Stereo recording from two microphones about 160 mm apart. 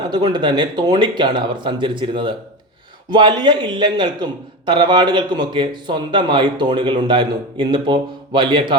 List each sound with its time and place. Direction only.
0.1 s a man's voice: 25° right (ahead or behind)